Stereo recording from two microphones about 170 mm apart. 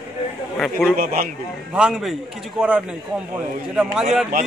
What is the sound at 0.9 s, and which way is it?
Speech, 50° right (ahead or behind).